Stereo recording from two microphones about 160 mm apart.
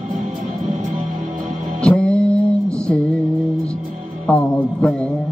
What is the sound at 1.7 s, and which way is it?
Music, 5° left (ahead or behind).